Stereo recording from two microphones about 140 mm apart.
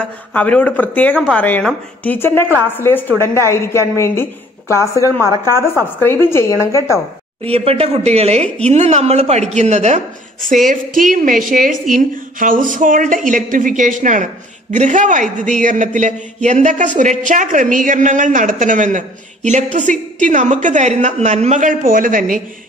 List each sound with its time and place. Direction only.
0.0 s a woman's voice: 10° left (ahead or behind)
5.2 s speech: 25° right (ahead or behind)
5.9 s a woman's voice: 15° left (ahead or behind)
7.4 s a woman's voice: 45° right (ahead or behind)
10.5 s a woman's voice: 70° right (ahead or behind)